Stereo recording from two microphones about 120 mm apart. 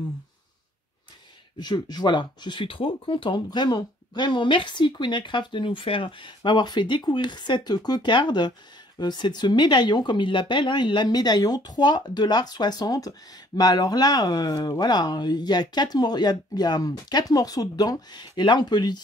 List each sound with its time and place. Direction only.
1.6 s speech: 35° left (ahead or behind)